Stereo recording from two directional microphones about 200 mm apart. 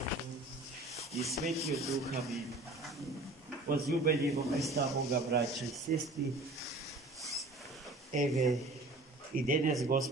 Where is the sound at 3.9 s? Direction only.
45° right (ahead or behind).